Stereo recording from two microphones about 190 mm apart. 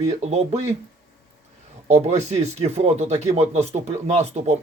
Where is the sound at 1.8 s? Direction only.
35° right (ahead or behind).